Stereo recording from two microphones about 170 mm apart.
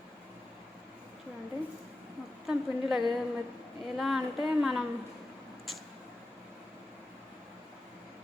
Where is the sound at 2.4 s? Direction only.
Centre (ahead or behind).